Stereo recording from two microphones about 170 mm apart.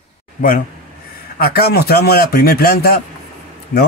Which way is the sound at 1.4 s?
65° left (ahead or behind).